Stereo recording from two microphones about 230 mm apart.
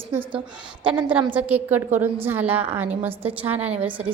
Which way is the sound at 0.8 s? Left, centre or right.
Centre.